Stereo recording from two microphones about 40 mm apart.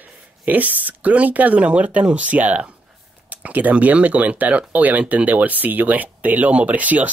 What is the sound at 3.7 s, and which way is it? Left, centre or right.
Speech, right.